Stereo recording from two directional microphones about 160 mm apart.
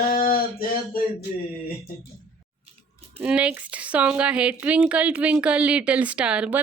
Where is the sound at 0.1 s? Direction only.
65° left (ahead or behind).